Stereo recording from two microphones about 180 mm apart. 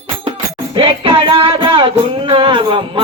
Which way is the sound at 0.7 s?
30° right (ahead or behind).